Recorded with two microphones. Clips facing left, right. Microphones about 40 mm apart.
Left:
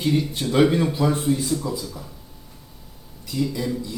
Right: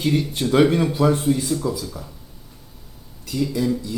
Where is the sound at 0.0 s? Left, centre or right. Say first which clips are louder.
Right 1 dB; right.